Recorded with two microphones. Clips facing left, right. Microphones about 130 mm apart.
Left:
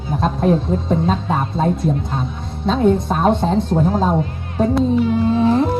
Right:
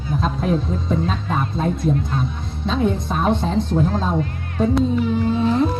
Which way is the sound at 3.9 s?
15° left (ahead or behind).